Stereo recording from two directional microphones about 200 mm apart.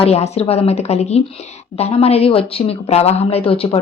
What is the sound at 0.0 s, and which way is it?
A woman's voice, 30° left (ahead or behind).